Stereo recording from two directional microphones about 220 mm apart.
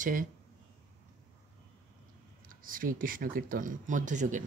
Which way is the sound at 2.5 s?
40° right (ahead or behind).